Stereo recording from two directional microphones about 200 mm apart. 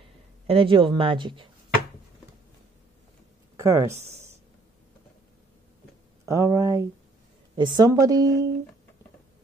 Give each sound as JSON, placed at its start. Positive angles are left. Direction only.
{"t": 0.5, "sound": "speech", "side_deg": -25}
{"t": 3.5, "sound": "speech", "side_deg": -15}
{"t": 6.2, "sound": "speech", "side_deg": -15}